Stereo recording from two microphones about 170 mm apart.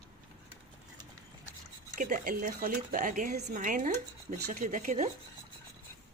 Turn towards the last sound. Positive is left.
turn(degrees=-50)  # may be behind; listen again after turning